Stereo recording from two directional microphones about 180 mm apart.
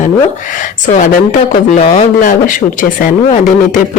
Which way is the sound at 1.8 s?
45° left (ahead or behind).